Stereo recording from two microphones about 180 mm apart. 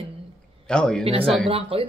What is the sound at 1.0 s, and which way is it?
Speech, 30° right (ahead or behind).